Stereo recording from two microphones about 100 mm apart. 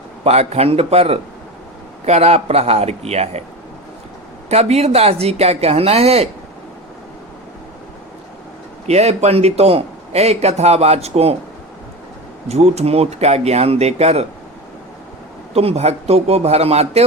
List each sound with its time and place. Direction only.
0.3 s a man's voice: 90° right
4.4 s a man's voice: 90° right
8.9 s a man's voice: 90° right
12.5 s a man's voice: 90° right
15.5 s a man's voice: 90° right